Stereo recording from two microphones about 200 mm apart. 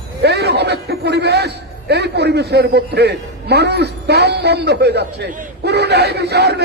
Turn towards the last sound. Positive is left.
turn(degrees=-55)  # may be behind; listen again after turning